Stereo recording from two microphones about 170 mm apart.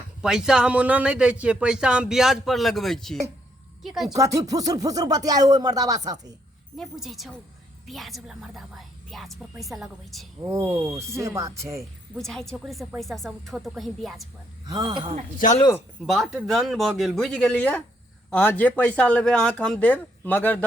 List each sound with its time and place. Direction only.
0.2 s speech: 5° right (ahead or behind)
4.1 s speech: 20° right (ahead or behind)
6.7 s speech: centre (ahead or behind)
10.4 s speech: 15° right (ahead or behind)
11.8 s speech: centre (ahead or behind)
14.7 s speech: 25° right (ahead or behind)
16.0 s speech: centre (ahead or behind)